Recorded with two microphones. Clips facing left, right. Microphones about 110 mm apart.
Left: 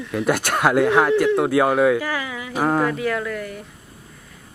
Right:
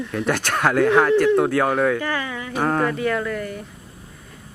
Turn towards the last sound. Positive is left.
turn(degrees=0)  # may be behind; listen again after turning